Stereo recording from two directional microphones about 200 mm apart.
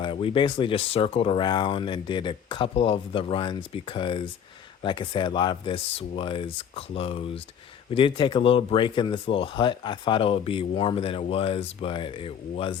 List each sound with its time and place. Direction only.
0.0 s speech: 25° left (ahead or behind)